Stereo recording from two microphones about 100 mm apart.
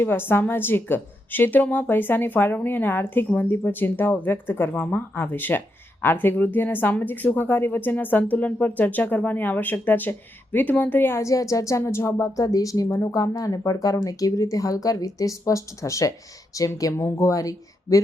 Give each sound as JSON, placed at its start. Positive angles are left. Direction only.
{"t": 0.0, "sound": "a woman's voice", "side_deg": 20}